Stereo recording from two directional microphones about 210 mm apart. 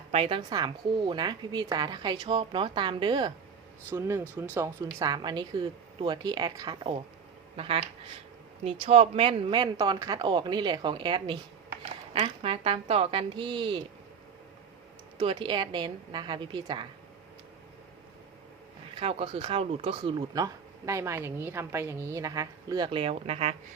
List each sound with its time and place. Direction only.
0.1 s a woman's voice: 25° right (ahead or behind)
3.8 s a woman's voice: 10° right (ahead or behind)
15.2 s a woman's voice: 25° right (ahead or behind)
18.9 s speech: 25° right (ahead or behind)